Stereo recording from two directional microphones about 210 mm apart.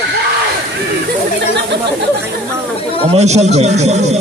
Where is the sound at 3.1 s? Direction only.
30° right (ahead or behind).